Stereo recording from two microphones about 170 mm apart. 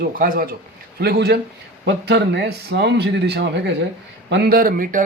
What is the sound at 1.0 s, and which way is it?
Speech, 70° right (ahead or behind).